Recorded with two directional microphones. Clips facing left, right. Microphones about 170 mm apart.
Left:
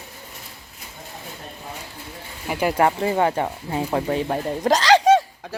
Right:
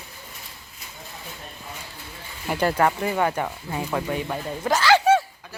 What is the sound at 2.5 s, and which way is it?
Speech, 10° left (ahead or behind).